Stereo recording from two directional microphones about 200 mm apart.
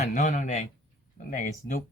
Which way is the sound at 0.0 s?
40° left (ahead or behind).